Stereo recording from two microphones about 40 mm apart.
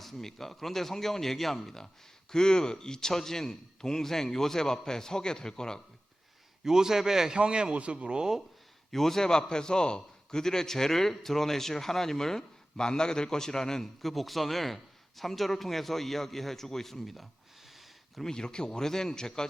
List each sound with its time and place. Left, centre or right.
0.0 s a man's voice: centre
6.7 s a man's voice: centre
7.3 s a man's voice: right
8.9 s a man's voice: centre
18.2 s a man's voice: centre